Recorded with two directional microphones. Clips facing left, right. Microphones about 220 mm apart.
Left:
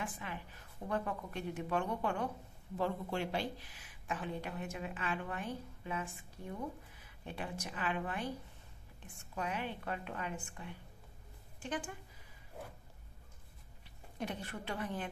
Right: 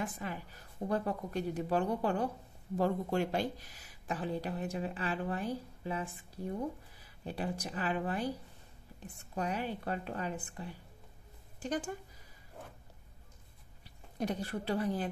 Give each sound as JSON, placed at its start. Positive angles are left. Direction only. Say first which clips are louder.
{"t": 0.0, "sound": "speech", "louder": "right 4 dB", "side_deg": -40}
{"t": 14.1, "sound": "speech", "louder": "right 6 dB", "side_deg": -40}